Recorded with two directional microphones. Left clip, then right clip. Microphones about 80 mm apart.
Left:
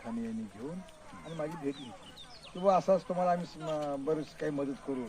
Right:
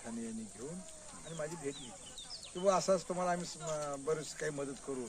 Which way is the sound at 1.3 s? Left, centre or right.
Right.